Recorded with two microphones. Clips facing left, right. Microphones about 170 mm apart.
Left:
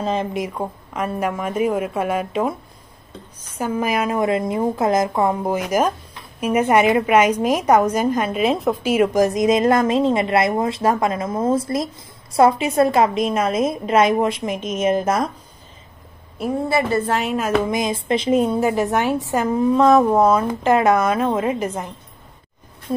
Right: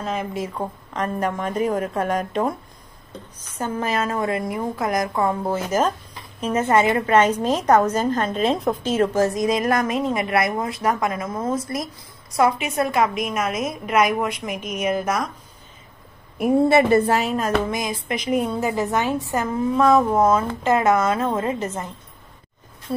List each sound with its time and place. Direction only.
0.0 s a woman's voice: 30° left (ahead or behind); by 2.5 s 5° left (ahead or behind)
3.5 s a woman's voice: 10° left (ahead or behind); by 15.3 s 30° left (ahead or behind)
16.6 s a woman's voice: 25° right (ahead or behind)
17.0 s a woman's voice: 5° right (ahead or behind)
17.6 s a woman's voice: 20° left (ahead or behind)